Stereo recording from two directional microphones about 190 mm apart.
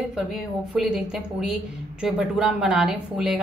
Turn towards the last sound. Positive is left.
turn(degrees=-5)  # may be behind; listen again after turning